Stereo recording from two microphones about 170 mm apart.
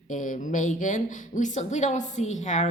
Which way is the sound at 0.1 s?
50° left (ahead or behind).